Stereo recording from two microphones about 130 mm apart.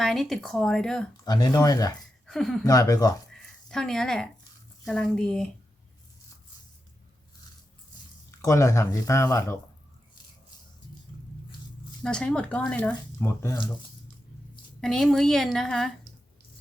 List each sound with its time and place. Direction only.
0.0 s a woman's voice: centre (ahead or behind)
1.2 s speech: 30° left (ahead or behind)
2.2 s speech: 5° left (ahead or behind)
2.6 s speech: 25° left (ahead or behind)
3.7 s a woman's voice: 5° left (ahead or behind)
8.4 s speech: 25° left (ahead or behind)
12.0 s speech: 5° left (ahead or behind)
14.8 s a woman's voice: 5° left (ahead or behind)